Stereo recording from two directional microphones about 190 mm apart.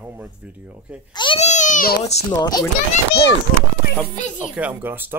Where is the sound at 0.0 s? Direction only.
10° right (ahead or behind).